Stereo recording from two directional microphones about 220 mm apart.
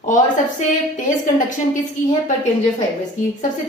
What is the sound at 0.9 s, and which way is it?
Speech, 35° left (ahead or behind).